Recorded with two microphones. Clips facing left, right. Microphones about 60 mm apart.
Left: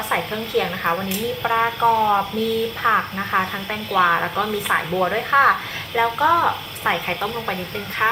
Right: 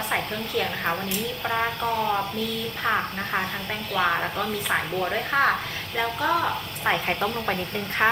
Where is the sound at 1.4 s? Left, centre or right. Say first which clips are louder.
Left 8 dB; left.